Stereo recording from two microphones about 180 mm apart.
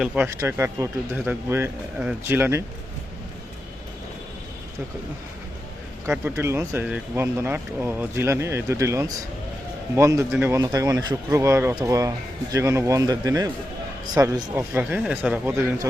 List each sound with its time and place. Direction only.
0.0 s speech: 10° right (ahead or behind)
6.1 s speech: 10° right (ahead or behind)